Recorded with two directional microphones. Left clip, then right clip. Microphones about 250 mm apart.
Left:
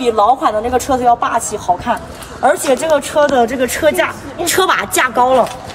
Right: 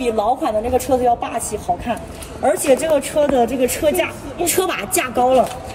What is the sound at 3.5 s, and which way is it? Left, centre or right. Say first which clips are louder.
Speech: left 3 dB; left.